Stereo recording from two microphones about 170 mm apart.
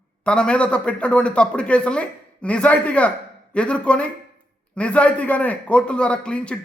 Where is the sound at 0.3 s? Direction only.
5° left (ahead or behind).